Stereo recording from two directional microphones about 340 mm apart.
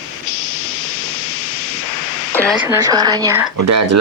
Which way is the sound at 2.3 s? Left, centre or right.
Centre.